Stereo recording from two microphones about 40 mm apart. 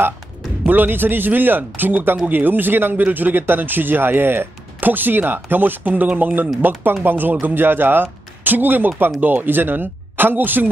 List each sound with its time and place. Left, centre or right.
0.7 s speech: right
3.0 s speech: right
4.8 s speech: right